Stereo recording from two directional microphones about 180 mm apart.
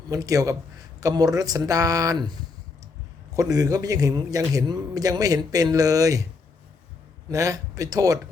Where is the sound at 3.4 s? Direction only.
20° right (ahead or behind).